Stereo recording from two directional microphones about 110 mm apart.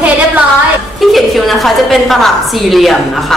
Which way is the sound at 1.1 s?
Centre (ahead or behind).